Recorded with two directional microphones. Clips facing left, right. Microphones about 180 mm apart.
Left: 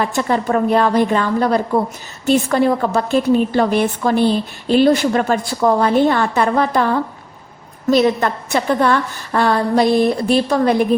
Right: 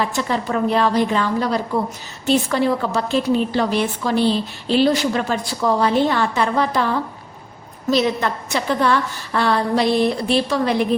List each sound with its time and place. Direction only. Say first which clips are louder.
0.0 s a woman's voice: left 4 dB; 50° left (ahead or behind)
7.9 s a woman's voice: left 4 dB; 50° left (ahead or behind)